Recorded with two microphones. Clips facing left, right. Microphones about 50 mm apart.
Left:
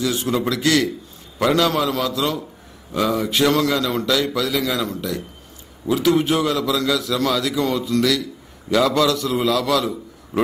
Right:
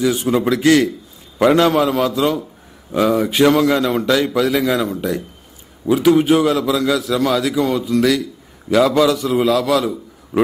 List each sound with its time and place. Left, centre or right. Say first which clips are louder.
0.0 s a man's voice: right 5 dB; centre